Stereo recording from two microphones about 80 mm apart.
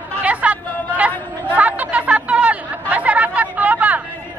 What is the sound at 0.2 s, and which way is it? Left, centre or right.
Chatter, centre.